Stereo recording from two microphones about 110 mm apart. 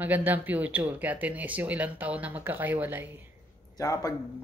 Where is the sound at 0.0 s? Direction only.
15° right (ahead or behind).